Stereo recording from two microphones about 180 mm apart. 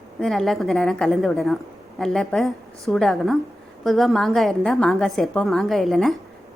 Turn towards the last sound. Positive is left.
turn(degrees=0)  # may be behind; listen again after turning